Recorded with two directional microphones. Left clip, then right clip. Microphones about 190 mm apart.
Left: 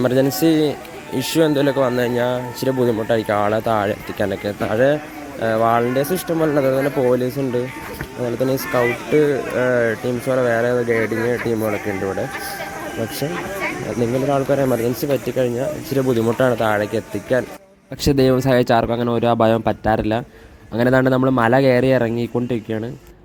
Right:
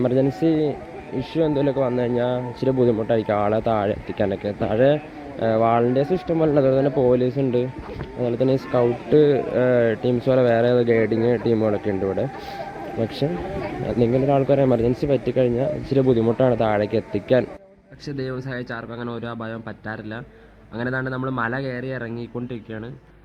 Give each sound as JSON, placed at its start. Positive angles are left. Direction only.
{"t": 0.0, "sound": "speech", "side_deg": 5}
{"t": 11.4, "sound": "speech", "side_deg": -5}
{"t": 14.0, "sound": "speech", "side_deg": 0}
{"t": 18.0, "sound": "speech", "side_deg": 45}